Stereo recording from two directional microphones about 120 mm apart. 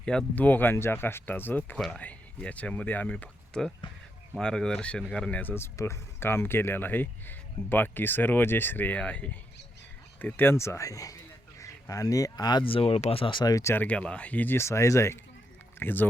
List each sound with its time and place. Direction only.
0.0 s speech: 10° left (ahead or behind); by 13.8 s 25° left (ahead or behind)
13.8 s speech: 10° left (ahead or behind)